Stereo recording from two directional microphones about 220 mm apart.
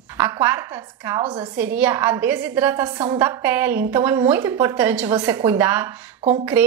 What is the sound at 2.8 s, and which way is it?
Speech, 20° right (ahead or behind).